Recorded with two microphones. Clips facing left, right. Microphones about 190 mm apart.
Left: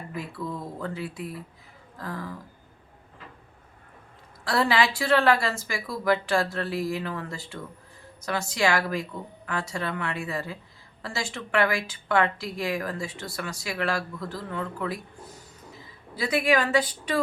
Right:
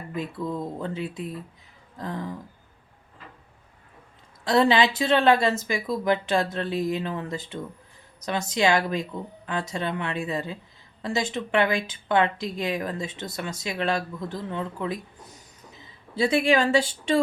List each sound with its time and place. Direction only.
0.2 s speech: 20° right (ahead or behind)
4.4 s a woman's voice: 20° right (ahead or behind)